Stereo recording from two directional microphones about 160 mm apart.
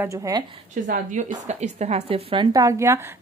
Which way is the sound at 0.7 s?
50° right (ahead or behind).